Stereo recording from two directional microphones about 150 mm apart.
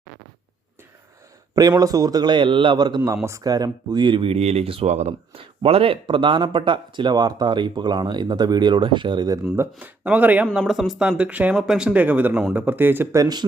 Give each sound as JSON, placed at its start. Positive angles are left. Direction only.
{"t": 1.5, "sound": "a man's voice", "side_deg": -25}
{"t": 9.8, "sound": "speech", "side_deg": -10}